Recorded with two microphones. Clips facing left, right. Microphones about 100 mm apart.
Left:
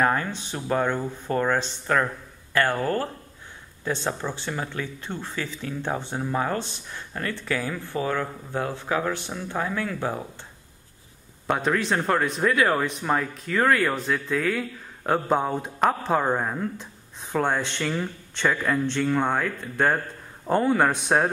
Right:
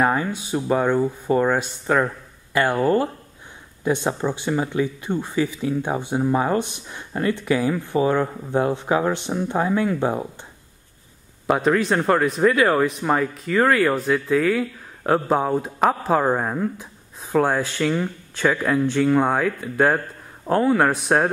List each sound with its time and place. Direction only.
0.0 s speech: 10° right (ahead or behind)
11.4 s speech: centre (ahead or behind)